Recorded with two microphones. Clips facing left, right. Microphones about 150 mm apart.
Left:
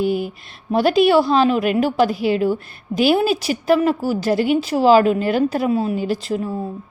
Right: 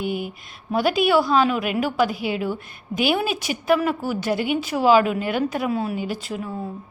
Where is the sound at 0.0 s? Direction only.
40° left (ahead or behind).